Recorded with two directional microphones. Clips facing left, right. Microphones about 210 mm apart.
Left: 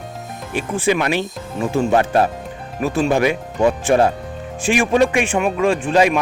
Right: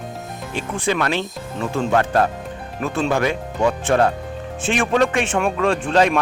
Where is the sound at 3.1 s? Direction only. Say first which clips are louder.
Left 3 dB; 15° left (ahead or behind).